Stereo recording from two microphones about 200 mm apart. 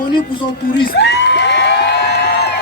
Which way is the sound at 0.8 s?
55° left (ahead or behind).